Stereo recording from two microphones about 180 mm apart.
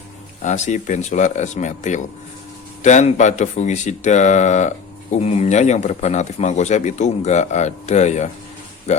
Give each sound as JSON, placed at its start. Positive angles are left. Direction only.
{"t": 0.4, "sound": "a man's voice", "side_deg": 40}